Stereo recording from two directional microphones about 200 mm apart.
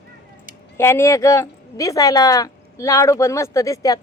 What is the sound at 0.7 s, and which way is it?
A woman's voice, 15° left (ahead or behind).